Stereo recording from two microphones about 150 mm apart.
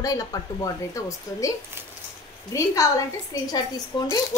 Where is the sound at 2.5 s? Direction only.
20° left (ahead or behind).